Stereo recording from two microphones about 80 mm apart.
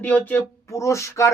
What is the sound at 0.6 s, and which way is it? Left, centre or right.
Speech, left.